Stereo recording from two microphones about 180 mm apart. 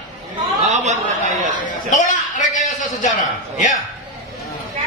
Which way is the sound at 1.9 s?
45° left (ahead or behind).